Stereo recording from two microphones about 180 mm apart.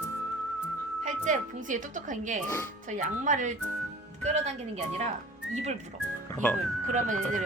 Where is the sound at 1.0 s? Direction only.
45° right (ahead or behind).